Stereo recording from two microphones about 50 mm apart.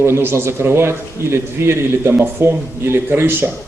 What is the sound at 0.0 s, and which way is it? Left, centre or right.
A man's voice, right.